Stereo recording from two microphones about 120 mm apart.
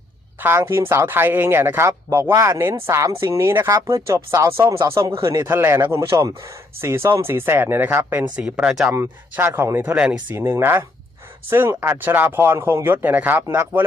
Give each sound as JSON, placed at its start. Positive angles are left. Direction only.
{"t": 0.3, "sound": "speech", "side_deg": -20}
{"t": 8.9, "sound": "speech", "side_deg": -15}
{"t": 9.8, "sound": "speech", "side_deg": -10}
{"t": 10.3, "sound": "speech", "side_deg": -20}